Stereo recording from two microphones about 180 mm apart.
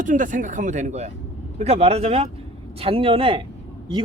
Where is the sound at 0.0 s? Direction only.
45° right (ahead or behind).